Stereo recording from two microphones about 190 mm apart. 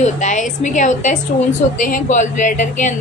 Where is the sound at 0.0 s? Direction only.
40° left (ahead or behind).